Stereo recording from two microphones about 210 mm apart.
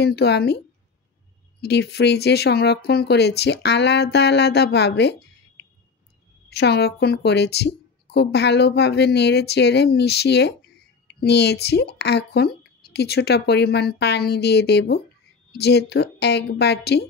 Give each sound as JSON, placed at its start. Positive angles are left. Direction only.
{"t": 0.0, "sound": "a woman's voice", "side_deg": 50}
{"t": 1.6, "sound": "a woman's voice", "side_deg": 50}
{"t": 6.6, "sound": "a woman's voice", "side_deg": 50}